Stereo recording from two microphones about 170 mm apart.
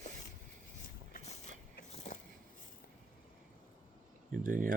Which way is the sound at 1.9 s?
40° left (ahead or behind).